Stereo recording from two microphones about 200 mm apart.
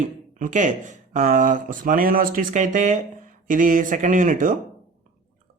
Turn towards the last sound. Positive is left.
turn(degrees=-40)  # may be behind; listen again after turning